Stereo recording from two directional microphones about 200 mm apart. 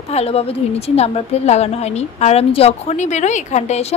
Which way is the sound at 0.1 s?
30° left (ahead or behind).